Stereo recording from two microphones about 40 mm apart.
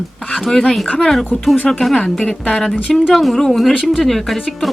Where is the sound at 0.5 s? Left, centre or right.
Centre.